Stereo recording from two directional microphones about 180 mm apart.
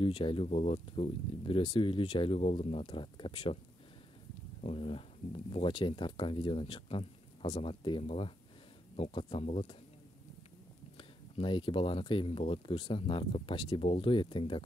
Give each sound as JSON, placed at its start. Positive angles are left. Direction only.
{"t": 0.0, "sound": "speech", "side_deg": 30}
{"t": 4.6, "sound": "speech", "side_deg": 30}
{"t": 11.0, "sound": "speech", "side_deg": 25}